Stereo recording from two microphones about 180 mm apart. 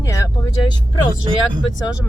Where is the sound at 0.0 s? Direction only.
15° left (ahead or behind).